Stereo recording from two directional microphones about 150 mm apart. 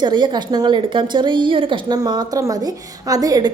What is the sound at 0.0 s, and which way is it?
A woman's voice, 30° right (ahead or behind).